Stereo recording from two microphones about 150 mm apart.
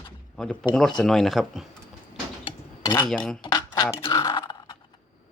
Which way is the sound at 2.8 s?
20° left (ahead or behind).